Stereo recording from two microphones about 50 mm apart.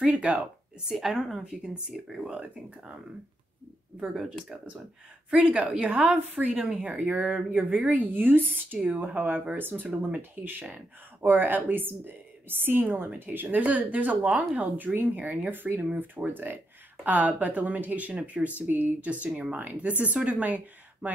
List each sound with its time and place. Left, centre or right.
0.0 s a woman's voice: right
0.8 s a woman's voice: centre
1.5 s a woman's voice: centre
4.3 s a woman's voice: right
6.1 s speech: right
9.6 s speech: right
9.8 s a woman's voice: right
11.2 s speech: right